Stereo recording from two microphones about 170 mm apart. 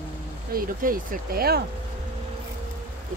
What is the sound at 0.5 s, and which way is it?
Speech, 55° right (ahead or behind).